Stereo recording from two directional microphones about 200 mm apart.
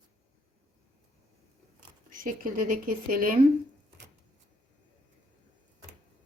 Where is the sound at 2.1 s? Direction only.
45° right (ahead or behind).